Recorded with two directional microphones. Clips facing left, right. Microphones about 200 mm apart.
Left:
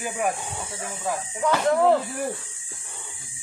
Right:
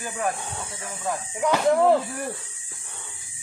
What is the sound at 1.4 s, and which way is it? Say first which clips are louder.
Speech: right 1 dB; 10° right (ahead or behind).